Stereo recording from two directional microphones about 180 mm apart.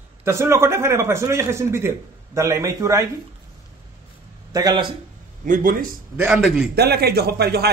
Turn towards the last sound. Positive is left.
turn(degrees=-60)  # may be behind; listen again after turning